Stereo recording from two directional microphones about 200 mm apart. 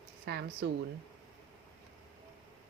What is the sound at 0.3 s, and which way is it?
Speech, 55° right (ahead or behind).